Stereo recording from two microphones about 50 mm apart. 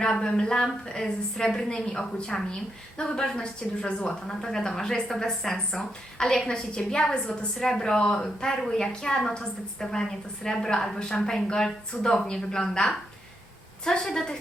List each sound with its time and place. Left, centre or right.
0.0 s a woman's voice: centre